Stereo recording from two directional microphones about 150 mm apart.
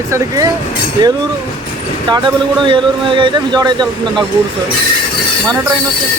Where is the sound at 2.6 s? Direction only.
35° right (ahead or behind).